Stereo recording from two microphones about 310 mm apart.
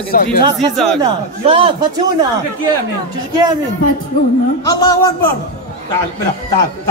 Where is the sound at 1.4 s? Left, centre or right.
Centre.